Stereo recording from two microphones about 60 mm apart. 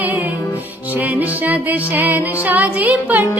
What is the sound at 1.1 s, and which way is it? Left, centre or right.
Music, right.